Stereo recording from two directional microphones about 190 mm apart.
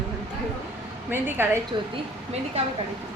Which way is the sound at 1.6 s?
30° right (ahead or behind).